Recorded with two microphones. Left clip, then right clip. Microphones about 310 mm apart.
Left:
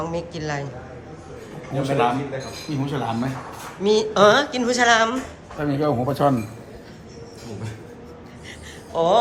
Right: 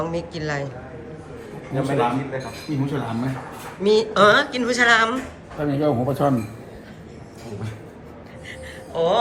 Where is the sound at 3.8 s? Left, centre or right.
Centre.